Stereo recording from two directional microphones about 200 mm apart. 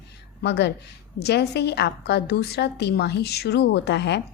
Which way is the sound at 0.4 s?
60° left (ahead or behind).